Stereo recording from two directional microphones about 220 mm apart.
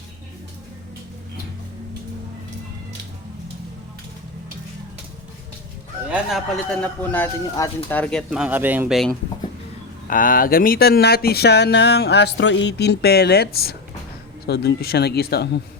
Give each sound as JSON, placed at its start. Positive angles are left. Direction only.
{"t": 6.1, "sound": "speech", "side_deg": 0}
{"t": 10.1, "sound": "speech", "side_deg": 40}